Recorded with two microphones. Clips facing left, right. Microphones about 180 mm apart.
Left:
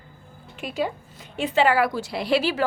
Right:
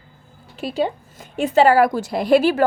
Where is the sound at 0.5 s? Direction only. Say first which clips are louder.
Right 5 dB; 35° right (ahead or behind).